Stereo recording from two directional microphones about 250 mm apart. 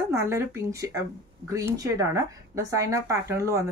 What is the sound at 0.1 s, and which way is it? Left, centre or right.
Speech, centre.